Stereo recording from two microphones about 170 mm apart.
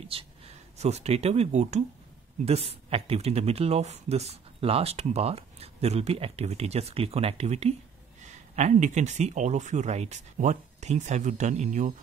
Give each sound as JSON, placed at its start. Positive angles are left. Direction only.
{"t": 0.1, "sound": "speech", "side_deg": -35}